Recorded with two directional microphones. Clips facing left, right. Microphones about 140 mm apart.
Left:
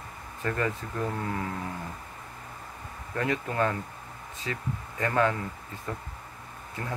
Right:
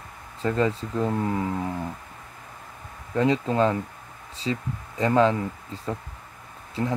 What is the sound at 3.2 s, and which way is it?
Speech, 20° right (ahead or behind).